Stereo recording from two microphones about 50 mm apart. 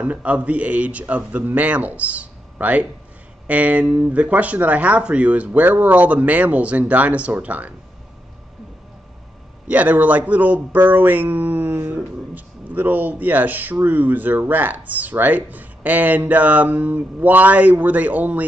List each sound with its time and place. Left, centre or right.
0.0 s speech: right
9.7 s speech: right
11.9 s speech: right